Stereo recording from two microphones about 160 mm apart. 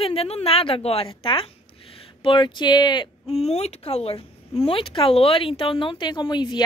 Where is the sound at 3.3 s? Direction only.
40° left (ahead or behind).